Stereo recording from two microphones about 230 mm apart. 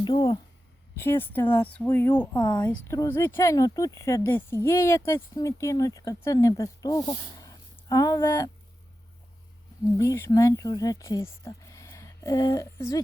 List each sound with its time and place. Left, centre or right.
0.0 s speech: centre
10.0 s speech: centre